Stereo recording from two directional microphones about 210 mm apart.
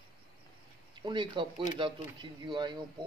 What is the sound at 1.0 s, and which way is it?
Speech, 20° right (ahead or behind).